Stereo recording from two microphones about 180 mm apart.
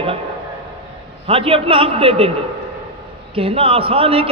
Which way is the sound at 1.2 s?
30° right (ahead or behind).